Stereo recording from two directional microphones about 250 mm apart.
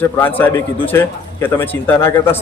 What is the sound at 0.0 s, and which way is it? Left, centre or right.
A man's voice, centre.